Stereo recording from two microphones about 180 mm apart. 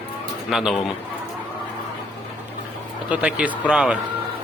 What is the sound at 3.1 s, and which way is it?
Speech, 5° right (ahead or behind).